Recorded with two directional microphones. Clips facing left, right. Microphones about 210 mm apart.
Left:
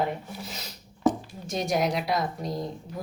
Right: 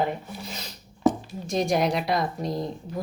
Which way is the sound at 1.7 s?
5° left (ahead or behind).